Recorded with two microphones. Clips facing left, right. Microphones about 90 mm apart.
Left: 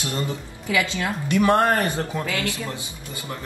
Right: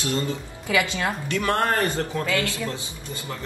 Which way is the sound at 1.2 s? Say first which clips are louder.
Left 6 dB; 20° left (ahead or behind).